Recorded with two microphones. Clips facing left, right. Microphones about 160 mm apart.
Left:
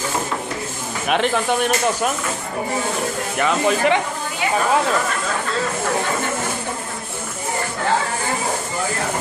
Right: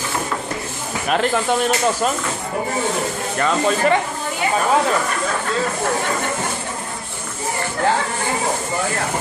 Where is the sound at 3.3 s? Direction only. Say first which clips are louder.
Even; 10° left (ahead or behind).